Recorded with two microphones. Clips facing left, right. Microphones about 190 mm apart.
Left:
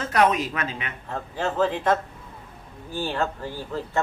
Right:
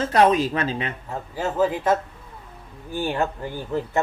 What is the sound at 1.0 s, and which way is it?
Speech, 10° right (ahead or behind).